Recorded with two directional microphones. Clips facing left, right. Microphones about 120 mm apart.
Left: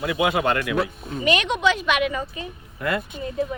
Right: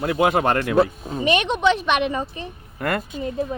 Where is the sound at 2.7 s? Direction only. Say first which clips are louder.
Right 1 dB; 50° right (ahead or behind).